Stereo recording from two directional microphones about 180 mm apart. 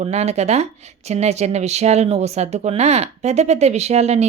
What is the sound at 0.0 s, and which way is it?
Speech, 35° right (ahead or behind).